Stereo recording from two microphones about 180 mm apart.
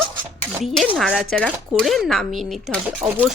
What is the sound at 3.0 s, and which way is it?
Speech, 10° right (ahead or behind).